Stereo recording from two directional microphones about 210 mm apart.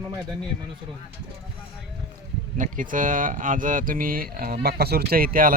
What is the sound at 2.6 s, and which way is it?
Speech, 40° right (ahead or behind).